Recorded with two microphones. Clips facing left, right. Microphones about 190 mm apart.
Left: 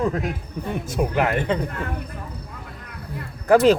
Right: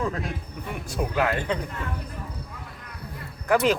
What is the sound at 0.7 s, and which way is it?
Speech, 20° left (ahead or behind).